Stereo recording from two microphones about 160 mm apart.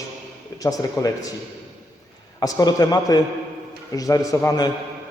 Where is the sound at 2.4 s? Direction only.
25° left (ahead or behind).